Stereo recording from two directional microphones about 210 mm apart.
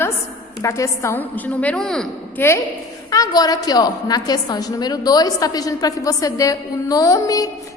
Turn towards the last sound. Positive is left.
turn(degrees=15)  # may be behind; listen again after turning